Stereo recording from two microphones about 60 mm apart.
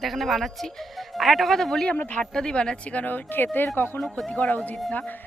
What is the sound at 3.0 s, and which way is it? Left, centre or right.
Speech, left.